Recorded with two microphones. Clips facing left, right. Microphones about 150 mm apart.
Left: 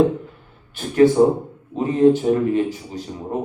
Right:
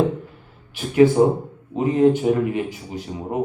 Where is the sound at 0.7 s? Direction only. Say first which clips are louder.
Even; 10° right (ahead or behind).